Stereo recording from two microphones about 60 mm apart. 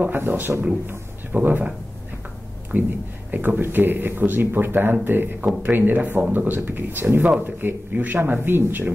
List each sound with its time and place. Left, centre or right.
0.0 s a man's voice: right
2.7 s a man's voice: right